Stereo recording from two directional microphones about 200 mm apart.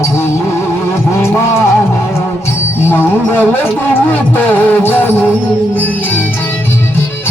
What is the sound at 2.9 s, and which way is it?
Music, 10° left (ahead or behind).